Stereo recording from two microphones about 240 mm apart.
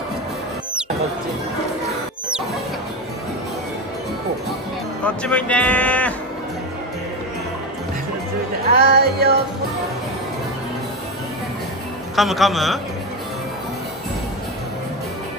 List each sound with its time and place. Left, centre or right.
5.0 s speech: centre
8.7 s music: right
12.2 s speech: centre